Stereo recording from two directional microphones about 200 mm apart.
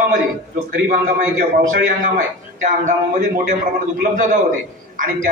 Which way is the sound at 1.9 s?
40° right (ahead or behind).